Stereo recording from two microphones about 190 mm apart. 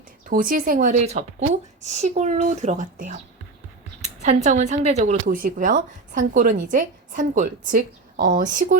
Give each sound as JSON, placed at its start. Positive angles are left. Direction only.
{"t": 0.3, "sound": "a woman's voice", "side_deg": -45}
{"t": 4.2, "sound": "a woman's voice", "side_deg": -35}